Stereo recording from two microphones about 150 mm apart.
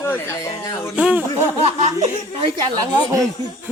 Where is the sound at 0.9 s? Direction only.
10° right (ahead or behind).